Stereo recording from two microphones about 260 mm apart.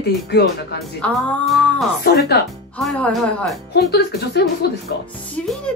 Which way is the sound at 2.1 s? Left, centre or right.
Left.